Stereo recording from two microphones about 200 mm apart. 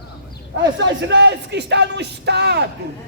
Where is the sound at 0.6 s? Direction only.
60° right (ahead or behind).